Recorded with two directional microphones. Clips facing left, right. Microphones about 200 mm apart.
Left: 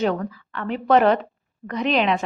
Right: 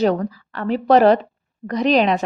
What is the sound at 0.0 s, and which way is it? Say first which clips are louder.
A woman's voice: right 4 dB; 40° right (ahead or behind).